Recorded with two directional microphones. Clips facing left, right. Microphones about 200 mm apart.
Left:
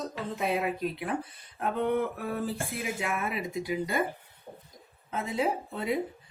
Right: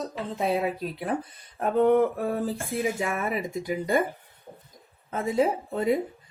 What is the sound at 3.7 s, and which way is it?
Speech, 50° right (ahead or behind).